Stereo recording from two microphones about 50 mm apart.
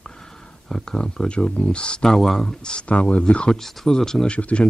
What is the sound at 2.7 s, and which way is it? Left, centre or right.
Speech, left.